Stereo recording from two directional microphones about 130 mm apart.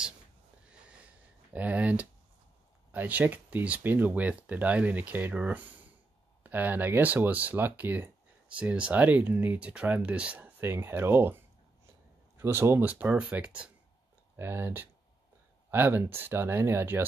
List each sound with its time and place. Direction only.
1.5 s speech: 10° right (ahead or behind)
12.4 s speech: 20° right (ahead or behind)